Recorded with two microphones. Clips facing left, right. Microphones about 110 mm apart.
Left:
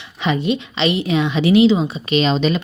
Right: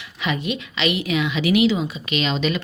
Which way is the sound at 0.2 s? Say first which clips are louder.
Left 6 dB; 30° left (ahead or behind).